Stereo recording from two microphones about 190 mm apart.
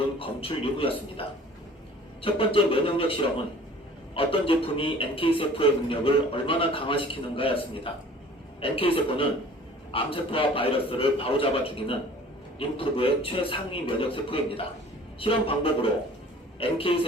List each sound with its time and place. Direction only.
0.2 s speech: 30° left (ahead or behind)
2.2 s speech: 30° left (ahead or behind)